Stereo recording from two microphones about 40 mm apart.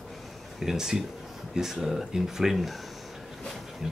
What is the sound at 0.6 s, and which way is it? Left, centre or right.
Speech, centre.